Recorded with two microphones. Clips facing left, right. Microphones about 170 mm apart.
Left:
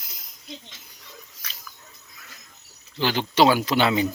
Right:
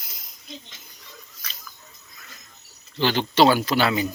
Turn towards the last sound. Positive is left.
turn(degrees=20)  # may be behind; listen again after turning